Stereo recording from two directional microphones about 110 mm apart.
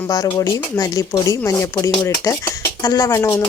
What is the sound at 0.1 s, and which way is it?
A woman's voice, 30° left (ahead or behind).